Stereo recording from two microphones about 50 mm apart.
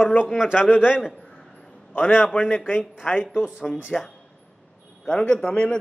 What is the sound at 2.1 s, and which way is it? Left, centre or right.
Speech, centre.